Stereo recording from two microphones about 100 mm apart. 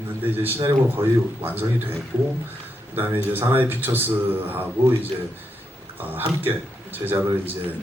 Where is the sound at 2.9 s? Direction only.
20° right (ahead or behind).